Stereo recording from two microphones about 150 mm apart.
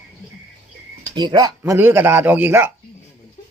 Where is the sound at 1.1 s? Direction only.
30° right (ahead or behind); by 2.7 s 15° right (ahead or behind).